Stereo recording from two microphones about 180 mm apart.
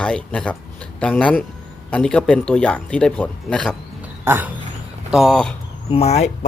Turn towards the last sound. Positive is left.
turn(degrees=40)  # may be behind; listen again after turning